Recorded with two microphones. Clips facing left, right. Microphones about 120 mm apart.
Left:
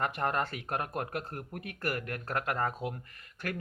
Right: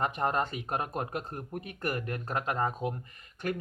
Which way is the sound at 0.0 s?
20° right (ahead or behind).